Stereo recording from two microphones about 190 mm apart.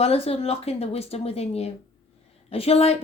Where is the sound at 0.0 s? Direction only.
30° left (ahead or behind).